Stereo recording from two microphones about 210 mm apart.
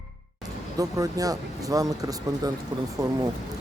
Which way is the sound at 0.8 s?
15° right (ahead or behind).